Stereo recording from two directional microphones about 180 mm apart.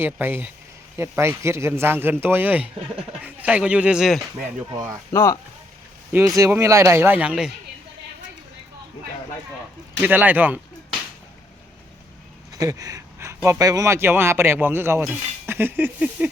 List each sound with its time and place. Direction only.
0.0 s a man's voice: 10° right (ahead or behind)
4.6 s speech: 20° right (ahead or behind)
5.1 s speech: 15° left (ahead or behind)
6.1 s a man's voice: 15° right (ahead or behind)
10.0 s a man's voice: 10° right (ahead or behind)
12.5 s speech: 20° right (ahead or behind)